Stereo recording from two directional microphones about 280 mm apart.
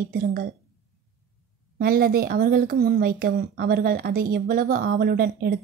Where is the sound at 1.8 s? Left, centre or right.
Right.